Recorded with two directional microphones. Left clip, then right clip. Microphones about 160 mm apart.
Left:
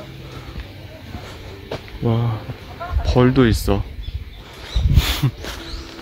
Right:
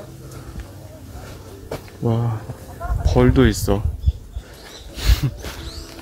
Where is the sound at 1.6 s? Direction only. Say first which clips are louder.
Left 1 dB; centre (ahead or behind).